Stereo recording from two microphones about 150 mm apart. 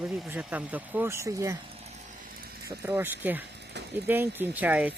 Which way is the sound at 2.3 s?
90° right.